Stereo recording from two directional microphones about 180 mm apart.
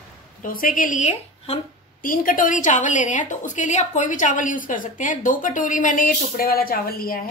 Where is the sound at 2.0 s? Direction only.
50° left (ahead or behind).